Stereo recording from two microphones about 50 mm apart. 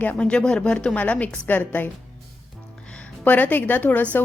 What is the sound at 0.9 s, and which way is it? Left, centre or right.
Speech, left.